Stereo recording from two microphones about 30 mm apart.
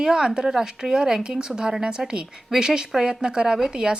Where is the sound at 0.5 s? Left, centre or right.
Centre.